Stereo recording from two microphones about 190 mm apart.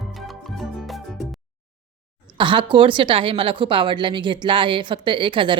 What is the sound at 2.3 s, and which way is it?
A woman's voice, 25° right (ahead or behind).